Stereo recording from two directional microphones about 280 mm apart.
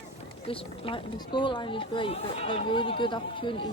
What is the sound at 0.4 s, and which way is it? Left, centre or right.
A woman's voice, centre.